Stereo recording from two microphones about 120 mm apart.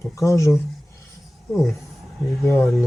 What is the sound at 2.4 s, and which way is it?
Speech, 25° left (ahead or behind).